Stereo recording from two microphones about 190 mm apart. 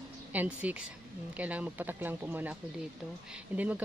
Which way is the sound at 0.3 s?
10° right (ahead or behind).